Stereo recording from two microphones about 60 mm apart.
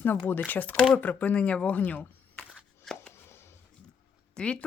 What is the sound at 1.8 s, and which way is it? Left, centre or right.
Speech, left.